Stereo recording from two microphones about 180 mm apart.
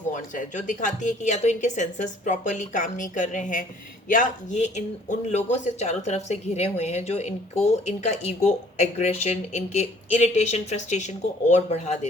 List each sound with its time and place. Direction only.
0.1 s a woman's voice: 45° left (ahead or behind)